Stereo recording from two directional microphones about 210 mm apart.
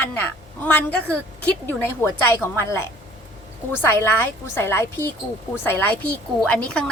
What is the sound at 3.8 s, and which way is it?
A woman's voice, 10° left (ahead or behind).